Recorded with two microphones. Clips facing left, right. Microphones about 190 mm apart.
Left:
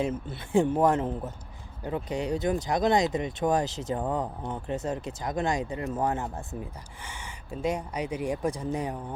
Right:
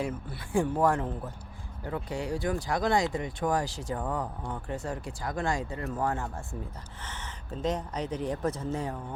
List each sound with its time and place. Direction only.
0.0 s speech: 25° left (ahead or behind)